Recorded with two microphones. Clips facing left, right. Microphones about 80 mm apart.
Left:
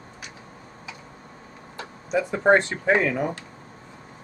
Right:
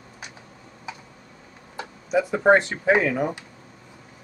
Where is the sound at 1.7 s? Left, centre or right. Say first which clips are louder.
Right 2 dB; centre.